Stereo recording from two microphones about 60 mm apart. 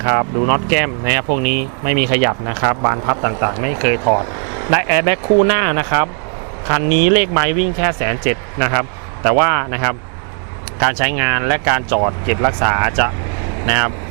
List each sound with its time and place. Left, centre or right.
0.0 s speech: right